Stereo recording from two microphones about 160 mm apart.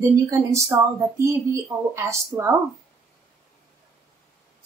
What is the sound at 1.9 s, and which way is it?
Speech, 15° right (ahead or behind).